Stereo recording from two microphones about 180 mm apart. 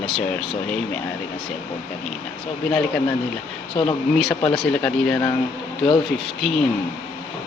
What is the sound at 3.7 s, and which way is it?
Speech, 30° left (ahead or behind).